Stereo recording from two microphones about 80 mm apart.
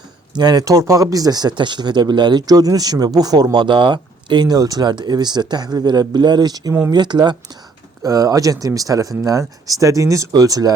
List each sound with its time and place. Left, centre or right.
0.3 s speech: right
8.0 s speech: right